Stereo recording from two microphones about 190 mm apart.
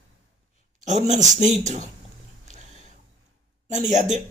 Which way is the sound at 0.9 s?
40° right (ahead or behind).